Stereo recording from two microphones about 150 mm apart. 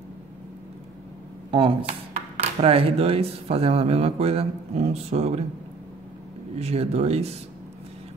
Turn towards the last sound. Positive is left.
turn(degrees=-45)  # may be behind; listen again after turning